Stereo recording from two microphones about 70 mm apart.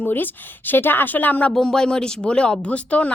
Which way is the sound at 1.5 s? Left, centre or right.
Centre.